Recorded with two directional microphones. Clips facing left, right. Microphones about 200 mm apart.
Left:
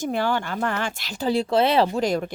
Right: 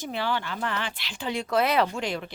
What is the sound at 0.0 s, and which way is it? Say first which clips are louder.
Speech: left 6 dB; 45° left (ahead or behind).